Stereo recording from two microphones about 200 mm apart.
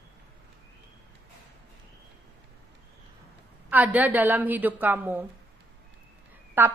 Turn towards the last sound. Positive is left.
turn(degrees=-10)  # may be behind; listen again after turning